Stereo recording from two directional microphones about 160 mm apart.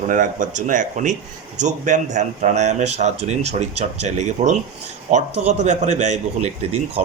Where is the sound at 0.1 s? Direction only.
55° right (ahead or behind).